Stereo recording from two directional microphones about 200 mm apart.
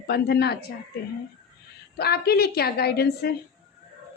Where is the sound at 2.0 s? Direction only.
55° left (ahead or behind).